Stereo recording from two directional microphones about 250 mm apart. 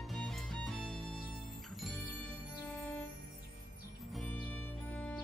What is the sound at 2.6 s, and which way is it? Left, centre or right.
Music, centre.